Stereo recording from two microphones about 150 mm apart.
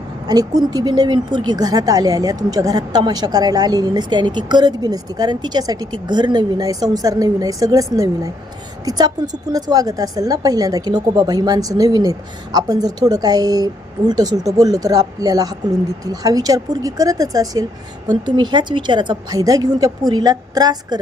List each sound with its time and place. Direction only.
0.3 s speech: 25° right (ahead or behind)